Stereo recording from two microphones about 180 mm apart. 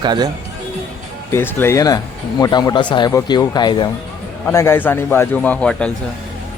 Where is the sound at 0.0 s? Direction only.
25° right (ahead or behind).